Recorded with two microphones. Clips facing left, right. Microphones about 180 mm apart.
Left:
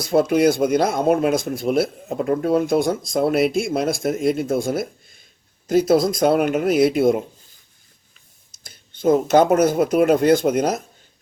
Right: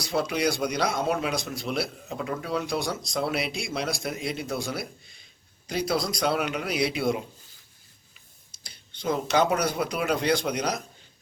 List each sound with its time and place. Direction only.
0.0 s speech: 50° left (ahead or behind)
8.6 s speech: 50° left (ahead or behind)